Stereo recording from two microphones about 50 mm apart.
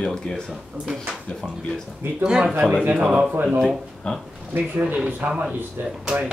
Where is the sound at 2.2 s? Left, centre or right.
Centre.